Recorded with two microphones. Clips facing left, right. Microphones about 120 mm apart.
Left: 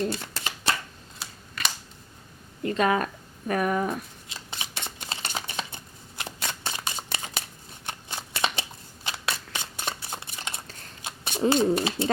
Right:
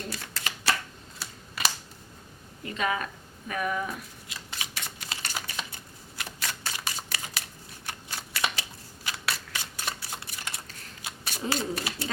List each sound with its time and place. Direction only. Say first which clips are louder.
0.1 s shuffling cards: left 4 dB; 25° left (ahead or behind)
1.6 s a sound: right 1 dB; 5° right (ahead or behind)
2.6 s speech: left 6 dB; 45° left (ahead or behind)
4.3 s shuffling cards: left 1 dB; 25° left (ahead or behind)
11.0 s scissors: left 9 dB; 25° left (ahead or behind)